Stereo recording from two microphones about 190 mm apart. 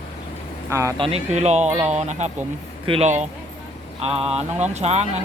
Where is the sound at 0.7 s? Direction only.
15° right (ahead or behind).